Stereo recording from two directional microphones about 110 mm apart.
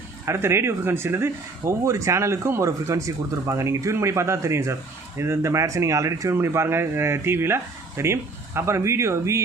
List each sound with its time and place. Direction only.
0.3 s speech: 25° right (ahead or behind)